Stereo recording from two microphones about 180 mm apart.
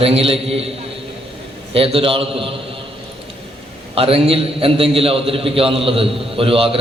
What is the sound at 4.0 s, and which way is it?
A man's voice, 30° right (ahead or behind).